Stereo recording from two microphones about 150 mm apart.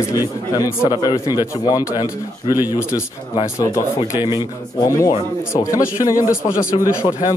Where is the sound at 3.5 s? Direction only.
25° left (ahead or behind).